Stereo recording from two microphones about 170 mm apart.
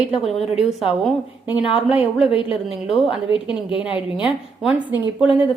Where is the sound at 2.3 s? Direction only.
30° left (ahead or behind).